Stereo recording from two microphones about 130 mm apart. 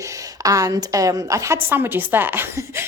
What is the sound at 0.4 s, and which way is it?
A woman's voice, 25° right (ahead or behind).